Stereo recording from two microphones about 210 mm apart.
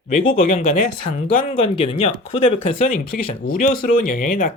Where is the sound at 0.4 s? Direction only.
30° left (ahead or behind).